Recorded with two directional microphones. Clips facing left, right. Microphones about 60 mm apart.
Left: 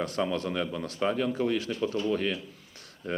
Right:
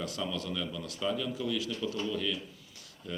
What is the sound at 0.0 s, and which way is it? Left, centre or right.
Speech, left.